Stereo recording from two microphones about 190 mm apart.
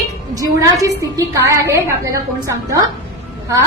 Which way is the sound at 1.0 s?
15° right (ahead or behind).